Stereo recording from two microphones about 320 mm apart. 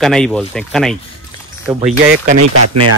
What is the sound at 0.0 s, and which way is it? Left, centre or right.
Speech, centre.